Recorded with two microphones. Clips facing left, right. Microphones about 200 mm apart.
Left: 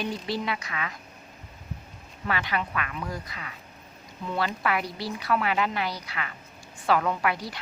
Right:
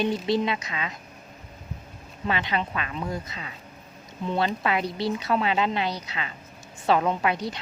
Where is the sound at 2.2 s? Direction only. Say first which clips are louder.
Right 2 dB; 20° right (ahead or behind).